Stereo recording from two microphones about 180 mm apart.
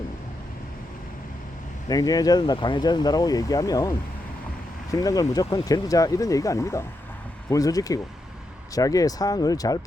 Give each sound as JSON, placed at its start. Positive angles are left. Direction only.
{"t": 1.9, "sound": "speech", "side_deg": 20}